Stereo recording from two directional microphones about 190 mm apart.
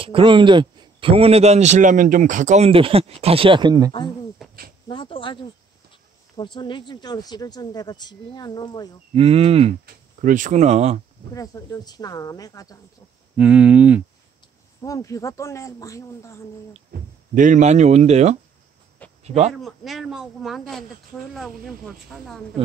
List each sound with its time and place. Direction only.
0.0 s a man's voice: 25° right (ahead or behind)
4.4 s a sound: centre (ahead or behind)
4.8 s speech: 25° left (ahead or behind)
9.1 s a man's voice: 30° right (ahead or behind)
10.2 s a man's voice: 40° right (ahead or behind)
11.3 s speech: 20° left (ahead or behind)
13.4 s speech: 5° right (ahead or behind)
14.8 s speech: 15° left (ahead or behind)
16.9 s a man's voice: 45° right (ahead or behind)
19.6 s a man's voice: centre (ahead or behind)